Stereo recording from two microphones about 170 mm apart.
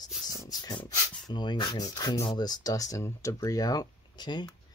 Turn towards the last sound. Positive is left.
turn(degrees=25)  # may be behind; listen again after turning